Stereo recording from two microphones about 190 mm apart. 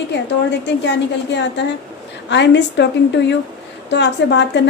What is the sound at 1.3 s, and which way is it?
A woman's voice, 65° left (ahead or behind).